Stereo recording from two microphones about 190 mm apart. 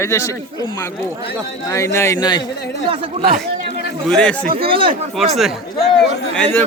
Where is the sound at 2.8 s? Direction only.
30° right (ahead or behind).